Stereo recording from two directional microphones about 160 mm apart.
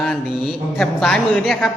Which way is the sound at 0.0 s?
Centre (ahead or behind).